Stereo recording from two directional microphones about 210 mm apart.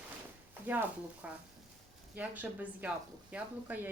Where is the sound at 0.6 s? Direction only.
10° right (ahead or behind).